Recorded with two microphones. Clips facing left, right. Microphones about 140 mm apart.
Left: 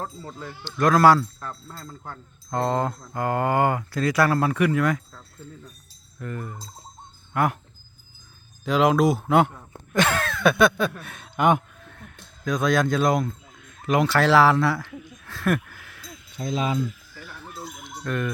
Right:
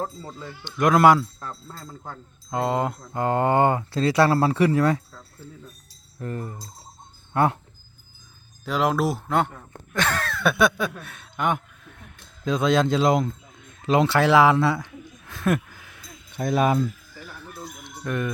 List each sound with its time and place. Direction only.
0.6 s speech: 20° right (ahead or behind)
6.1 s fowl: 30° right (ahead or behind)
7.3 s speech: 30° right (ahead or behind)
8.6 s speech: 5° right (ahead or behind)
9.9 s a sound: centre (ahead or behind)
11.3 s speech: 90° left
12.5 s speech: 25° right (ahead or behind)
16.4 s speech: 60° right (ahead or behind)
17.8 s bird: 15° right (ahead or behind)